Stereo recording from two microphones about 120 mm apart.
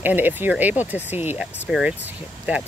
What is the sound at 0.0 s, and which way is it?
Speech, 15° right (ahead or behind).